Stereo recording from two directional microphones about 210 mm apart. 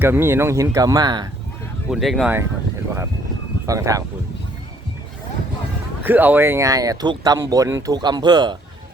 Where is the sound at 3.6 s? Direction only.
15° right (ahead or behind).